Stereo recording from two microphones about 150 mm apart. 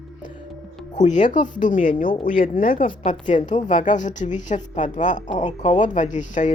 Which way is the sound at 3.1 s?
55° left (ahead or behind).